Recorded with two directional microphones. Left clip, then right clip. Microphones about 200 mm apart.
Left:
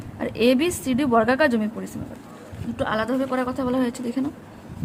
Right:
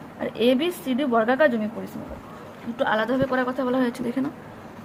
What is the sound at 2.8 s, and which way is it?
Speech, 30° left (ahead or behind).